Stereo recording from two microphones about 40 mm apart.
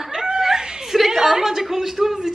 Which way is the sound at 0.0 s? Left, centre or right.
Centre.